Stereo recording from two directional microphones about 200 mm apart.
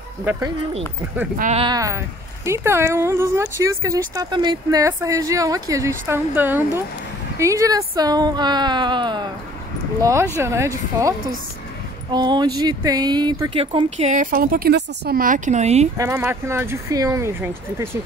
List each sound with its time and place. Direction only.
0.2 s speech: 10° right (ahead or behind)
1.4 s speech: 30° right (ahead or behind)
1.7 s speech: 15° right (ahead or behind); by 15.9 s 35° right (ahead or behind)
16.0 s speech: 15° right (ahead or behind)